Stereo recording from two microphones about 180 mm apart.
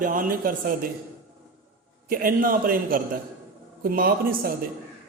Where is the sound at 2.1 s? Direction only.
50° right (ahead or behind).